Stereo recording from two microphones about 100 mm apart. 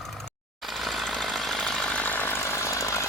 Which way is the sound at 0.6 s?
Centre (ahead or behind).